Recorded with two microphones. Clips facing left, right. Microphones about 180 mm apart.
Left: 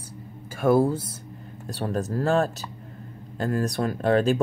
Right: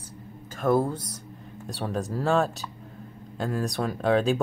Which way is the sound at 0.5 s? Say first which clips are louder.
Left 3 dB; 10° left (ahead or behind).